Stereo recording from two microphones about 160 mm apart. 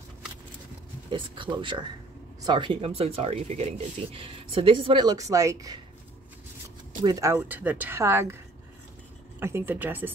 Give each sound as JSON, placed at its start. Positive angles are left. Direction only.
{"t": 1.1, "sound": "speech", "side_deg": -30}
{"t": 7.0, "sound": "speech", "side_deg": -20}
{"t": 7.3, "sound": "speech", "side_deg": -10}
{"t": 9.4, "sound": "speech", "side_deg": -15}